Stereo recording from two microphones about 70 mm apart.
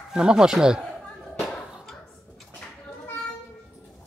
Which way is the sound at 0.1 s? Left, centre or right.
Centre.